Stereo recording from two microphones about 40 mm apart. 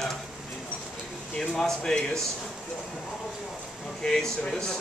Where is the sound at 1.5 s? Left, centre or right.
Centre.